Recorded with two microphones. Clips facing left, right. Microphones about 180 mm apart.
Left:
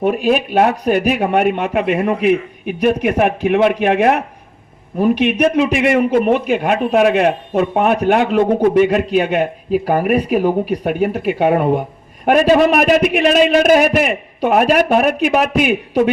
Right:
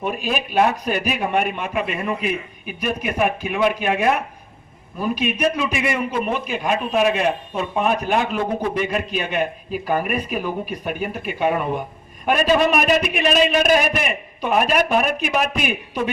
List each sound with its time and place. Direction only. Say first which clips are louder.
0.0 s a man's voice: left 9 dB; 60° left (ahead or behind)
10.1 s a man's voice: left 10 dB; 75° left (ahead or behind)